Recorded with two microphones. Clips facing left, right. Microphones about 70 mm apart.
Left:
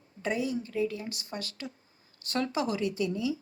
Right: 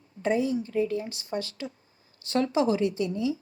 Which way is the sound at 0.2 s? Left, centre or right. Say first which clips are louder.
Right 5 dB; right.